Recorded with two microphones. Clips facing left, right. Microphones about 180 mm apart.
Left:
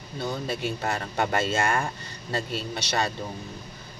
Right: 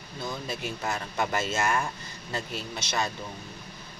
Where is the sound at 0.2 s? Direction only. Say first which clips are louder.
Left 5 dB; 30° left (ahead or behind).